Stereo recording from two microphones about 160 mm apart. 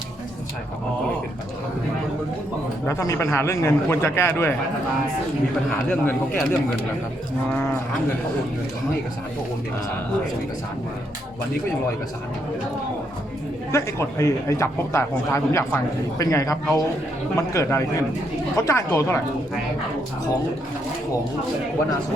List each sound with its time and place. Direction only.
2.8 s speech: 20° left (ahead or behind)
5.9 s speech: 10° left (ahead or behind)
13.7 s speech: 20° left (ahead or behind)